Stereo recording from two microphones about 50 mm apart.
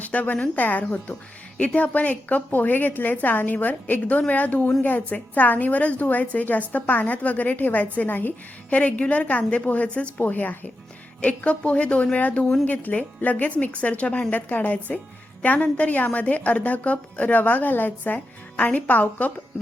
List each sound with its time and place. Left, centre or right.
0.0 s a woman's voice: left
8.7 s a woman's voice: left
10.2 s a woman's voice: left